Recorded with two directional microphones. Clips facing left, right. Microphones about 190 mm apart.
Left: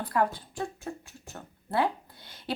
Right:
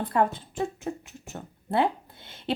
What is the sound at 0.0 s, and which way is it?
Speech, 25° right (ahead or behind).